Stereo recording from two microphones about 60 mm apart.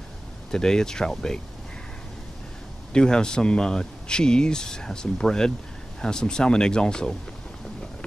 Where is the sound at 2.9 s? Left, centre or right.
Centre.